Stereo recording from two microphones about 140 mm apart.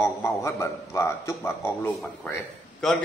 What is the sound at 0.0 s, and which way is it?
A man's voice, 20° left (ahead or behind).